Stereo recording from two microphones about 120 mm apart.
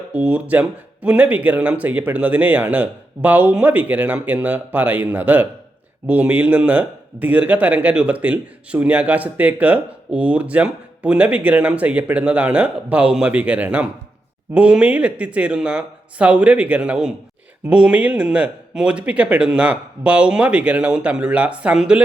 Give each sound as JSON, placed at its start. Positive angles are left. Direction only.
{"t": 0.1, "sound": "a man's voice", "side_deg": -10}